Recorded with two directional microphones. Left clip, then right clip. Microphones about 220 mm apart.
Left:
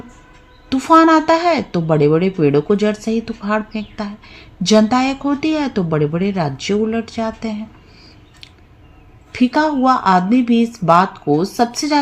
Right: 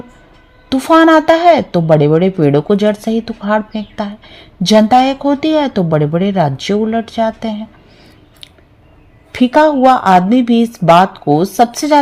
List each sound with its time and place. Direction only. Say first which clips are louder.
0.7 s a woman's voice: right 3 dB; 30° right (ahead or behind)
9.3 s a woman's voice: right 7 dB; 35° right (ahead or behind)